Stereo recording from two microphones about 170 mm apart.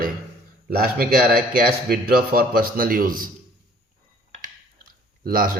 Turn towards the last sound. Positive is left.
turn(degrees=-55)  # may be behind; listen again after turning